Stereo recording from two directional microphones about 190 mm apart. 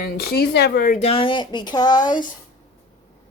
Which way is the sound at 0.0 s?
55° left (ahead or behind).